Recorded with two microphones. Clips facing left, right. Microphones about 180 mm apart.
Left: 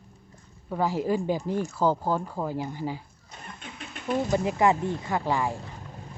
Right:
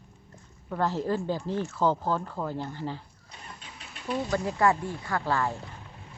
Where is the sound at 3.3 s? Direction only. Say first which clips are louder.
Left 4 dB; 50° left (ahead or behind).